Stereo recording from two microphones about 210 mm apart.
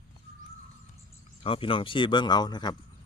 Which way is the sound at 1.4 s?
25° left (ahead or behind).